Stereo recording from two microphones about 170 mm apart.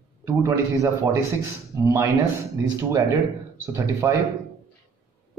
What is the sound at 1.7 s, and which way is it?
Speech, 15° right (ahead or behind).